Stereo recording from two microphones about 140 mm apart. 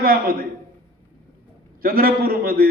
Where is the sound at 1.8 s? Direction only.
90° right.